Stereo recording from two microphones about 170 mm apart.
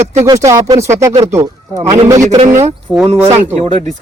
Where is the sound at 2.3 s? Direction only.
40° right (ahead or behind).